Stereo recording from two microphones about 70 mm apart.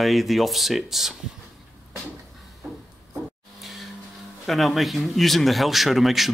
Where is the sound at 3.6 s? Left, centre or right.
Centre.